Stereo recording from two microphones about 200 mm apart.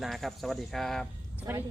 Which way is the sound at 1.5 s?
10° right (ahead or behind).